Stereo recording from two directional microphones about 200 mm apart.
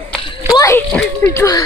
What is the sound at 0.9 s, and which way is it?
Speech, 5° left (ahead or behind).